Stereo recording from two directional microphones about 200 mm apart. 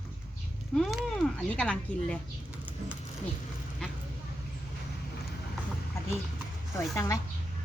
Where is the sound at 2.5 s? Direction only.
5° right (ahead or behind).